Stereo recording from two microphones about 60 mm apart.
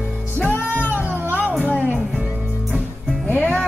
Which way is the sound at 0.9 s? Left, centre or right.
Right.